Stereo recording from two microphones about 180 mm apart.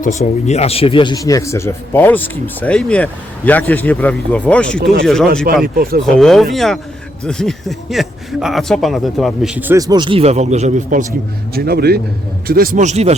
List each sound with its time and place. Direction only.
0.0 s speech: 40° left (ahead or behind); by 4.8 s 5° left (ahead or behind)
4.8 s speech: 60° right (ahead or behind)
5.0 s speech: centre (ahead or behind)
5.6 s speech: 55° right (ahead or behind)
6.1 s speech: centre (ahead or behind); by 11.0 s 45° right (ahead or behind)
11.5 s a man's voice: 60° right (ahead or behind); by 13.1 s 40° right (ahead or behind)